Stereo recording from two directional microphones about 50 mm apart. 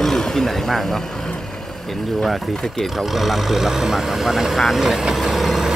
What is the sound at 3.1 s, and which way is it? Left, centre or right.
Speech, centre.